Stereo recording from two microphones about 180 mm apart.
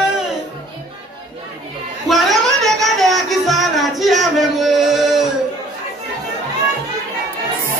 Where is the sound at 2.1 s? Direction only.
Centre (ahead or behind).